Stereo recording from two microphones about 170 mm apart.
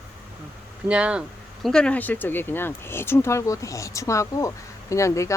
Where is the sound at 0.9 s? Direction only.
5° right (ahead or behind).